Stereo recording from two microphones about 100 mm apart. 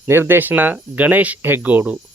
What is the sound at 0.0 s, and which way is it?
Speech, 25° right (ahead or behind).